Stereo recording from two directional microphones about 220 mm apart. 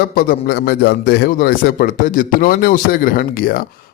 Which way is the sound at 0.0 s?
40° left (ahead or behind).